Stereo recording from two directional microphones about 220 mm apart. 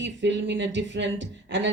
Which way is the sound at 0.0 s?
55° right (ahead or behind).